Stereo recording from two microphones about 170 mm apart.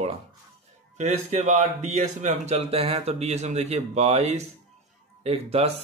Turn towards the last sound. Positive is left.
turn(degrees=-35)  # may be behind; listen again after turning